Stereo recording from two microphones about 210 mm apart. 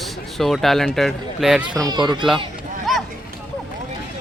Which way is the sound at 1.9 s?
20° right (ahead or behind).